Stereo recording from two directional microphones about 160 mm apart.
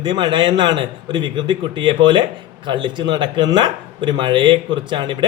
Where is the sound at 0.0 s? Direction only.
30° right (ahead or behind).